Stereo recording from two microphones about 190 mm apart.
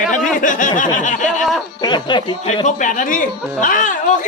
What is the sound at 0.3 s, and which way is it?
Snicker, 45° left (ahead or behind).